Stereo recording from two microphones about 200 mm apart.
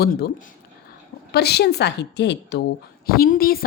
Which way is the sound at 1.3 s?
55° left (ahead or behind).